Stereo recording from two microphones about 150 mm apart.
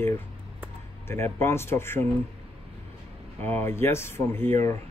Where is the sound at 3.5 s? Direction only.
15° left (ahead or behind).